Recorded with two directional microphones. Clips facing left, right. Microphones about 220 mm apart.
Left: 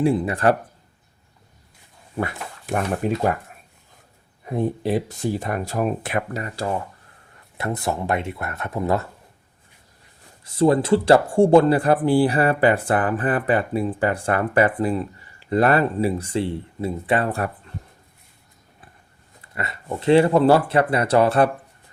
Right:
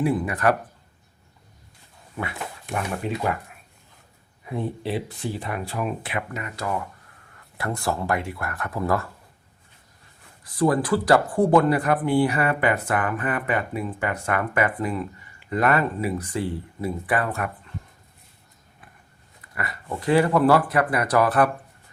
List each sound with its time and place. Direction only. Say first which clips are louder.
0.0 s speech: left 3 dB; 25° left (ahead or behind)
2.7 s speech: left 5 dB; 45° left (ahead or behind)
4.4 s speech: left 5 dB; 45° left (ahead or behind); by 9.0 s 20° left (ahead or behind)
10.4 s speech: left 4 dB; 25° left (ahead or behind)
19.5 s speech: left 2 dB; 25° left (ahead or behind)